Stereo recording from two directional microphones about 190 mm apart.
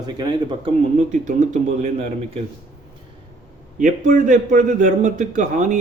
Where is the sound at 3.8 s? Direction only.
40° right (ahead or behind).